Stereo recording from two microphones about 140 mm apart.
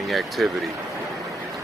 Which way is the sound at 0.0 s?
Centre (ahead or behind).